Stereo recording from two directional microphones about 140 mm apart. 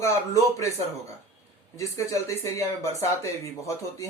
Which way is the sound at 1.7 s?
20° left (ahead or behind).